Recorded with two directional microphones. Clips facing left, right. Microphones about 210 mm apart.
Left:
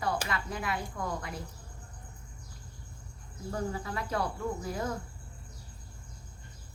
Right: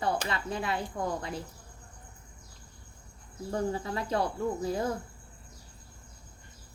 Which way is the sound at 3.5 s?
30° right (ahead or behind).